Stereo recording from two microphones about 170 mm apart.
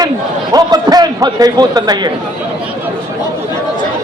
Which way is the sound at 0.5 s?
20° right (ahead or behind).